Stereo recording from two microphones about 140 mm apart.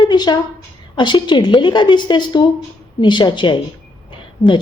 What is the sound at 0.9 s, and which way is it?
A woman's voice, 35° left (ahead or behind).